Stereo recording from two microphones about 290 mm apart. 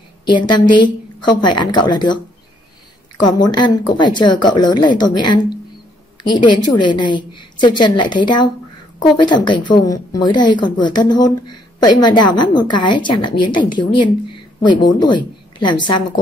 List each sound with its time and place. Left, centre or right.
0.2 s a woman's voice: centre
3.2 s a woman's voice: centre